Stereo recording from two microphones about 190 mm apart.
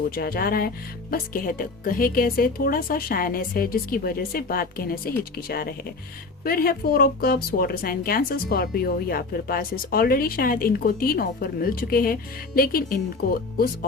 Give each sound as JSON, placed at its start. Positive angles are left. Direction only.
{"t": 0.1, "sound": "speech", "side_deg": 50}